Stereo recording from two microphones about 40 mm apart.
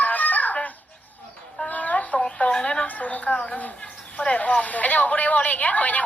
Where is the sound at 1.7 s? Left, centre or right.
Left.